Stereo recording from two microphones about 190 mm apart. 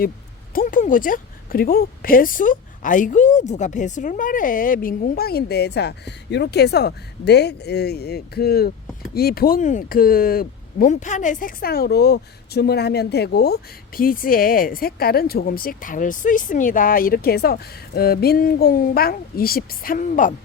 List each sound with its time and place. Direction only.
0.5 s speech: 45° left (ahead or behind)